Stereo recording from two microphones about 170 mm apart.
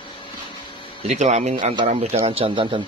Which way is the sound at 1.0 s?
45° right (ahead or behind).